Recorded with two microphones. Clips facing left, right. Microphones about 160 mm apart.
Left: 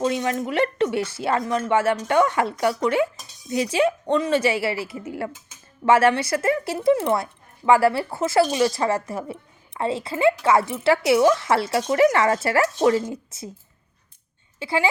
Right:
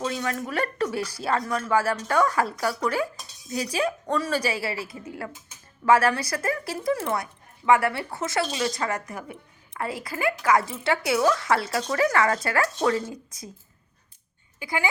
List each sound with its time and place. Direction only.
0.0 s speech: 25° left (ahead or behind)
14.6 s speech: 25° left (ahead or behind)